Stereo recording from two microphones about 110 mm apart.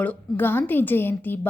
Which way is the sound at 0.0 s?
15° left (ahead or behind).